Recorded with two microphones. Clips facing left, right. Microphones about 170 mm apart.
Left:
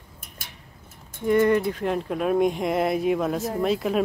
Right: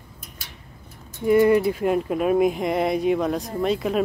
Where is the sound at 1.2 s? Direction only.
10° right (ahead or behind).